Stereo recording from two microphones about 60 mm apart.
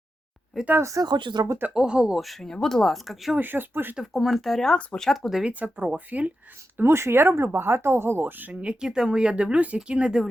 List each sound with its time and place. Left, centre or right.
0.8 s speech: right
1.4 s speech: right
1.7 s speech: centre
2.1 s speech: centre
3.3 s speech: right
3.9 s speech: centre
5.5 s speech: right
6.7 s speech: right
8.6 s speech: centre